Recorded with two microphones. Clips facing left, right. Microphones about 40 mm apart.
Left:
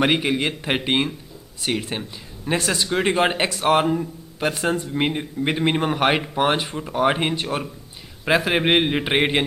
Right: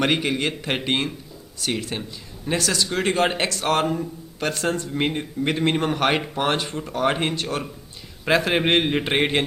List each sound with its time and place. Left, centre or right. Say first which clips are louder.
0.0 s speech: left 2 dB; centre